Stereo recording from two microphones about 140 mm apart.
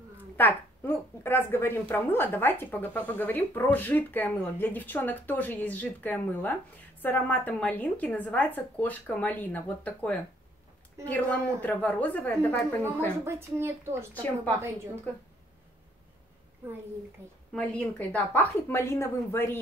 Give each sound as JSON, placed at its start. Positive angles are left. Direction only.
{"t": 0.4, "sound": "a woman's voice", "side_deg": 15}
{"t": 12.8, "sound": "a woman's voice", "side_deg": -20}
{"t": 17.5, "sound": "a woman's voice", "side_deg": 10}